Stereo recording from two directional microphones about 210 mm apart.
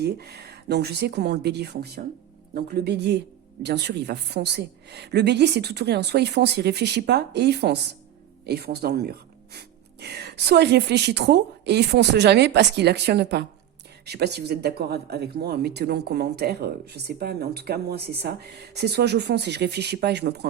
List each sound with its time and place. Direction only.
0.0 s speech: 50° right (ahead or behind)